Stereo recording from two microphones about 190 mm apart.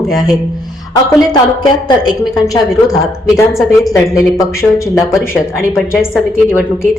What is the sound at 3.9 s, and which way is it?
Speech, 15° left (ahead or behind).